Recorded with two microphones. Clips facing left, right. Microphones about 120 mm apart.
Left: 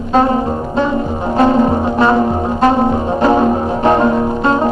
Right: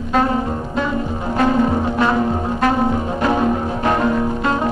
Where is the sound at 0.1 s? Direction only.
30° left (ahead or behind).